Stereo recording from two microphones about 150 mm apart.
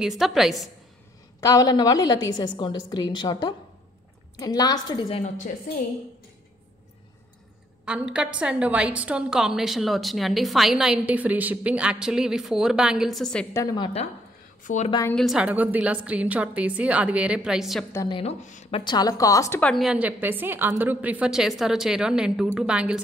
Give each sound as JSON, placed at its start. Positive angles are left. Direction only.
{"t": 0.0, "sound": "a woman's voice", "side_deg": 0}
{"t": 1.4, "sound": "a woman's voice", "side_deg": 25}
{"t": 7.8, "sound": "a woman's voice", "side_deg": -5}
{"t": 13.5, "sound": "a woman's voice", "side_deg": 20}
{"t": 13.7, "sound": "a woman's voice", "side_deg": 35}
{"t": 14.6, "sound": "a woman's voice", "side_deg": 55}
{"t": 15.1, "sound": "a woman's voice", "side_deg": -5}
{"t": 18.0, "sound": "a woman's voice", "side_deg": 35}
{"t": 18.4, "sound": "a woman's voice", "side_deg": 55}
{"t": 18.7, "sound": "a woman's voice", "side_deg": 35}
{"t": 19.6, "sound": "a woman's voice", "side_deg": 0}